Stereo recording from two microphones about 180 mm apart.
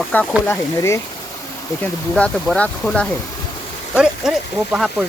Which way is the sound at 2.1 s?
5° left (ahead or behind).